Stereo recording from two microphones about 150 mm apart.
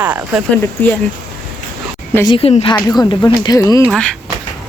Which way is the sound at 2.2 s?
35° left (ahead or behind).